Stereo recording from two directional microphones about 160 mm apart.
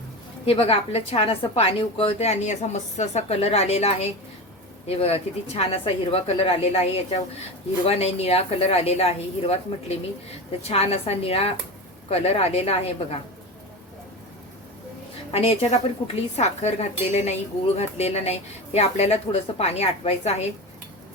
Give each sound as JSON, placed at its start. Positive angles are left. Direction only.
{"t": 0.4, "sound": "speech", "side_deg": 35}
{"t": 10.6, "sound": "speech", "side_deg": 40}
{"t": 15.3, "sound": "speech", "side_deg": 40}